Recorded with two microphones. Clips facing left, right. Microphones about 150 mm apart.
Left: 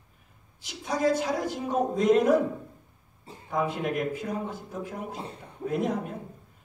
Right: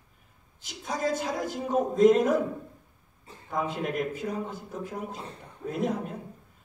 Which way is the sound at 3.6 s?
50° left (ahead or behind).